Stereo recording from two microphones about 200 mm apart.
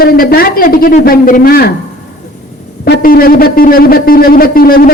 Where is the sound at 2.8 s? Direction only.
45° left (ahead or behind).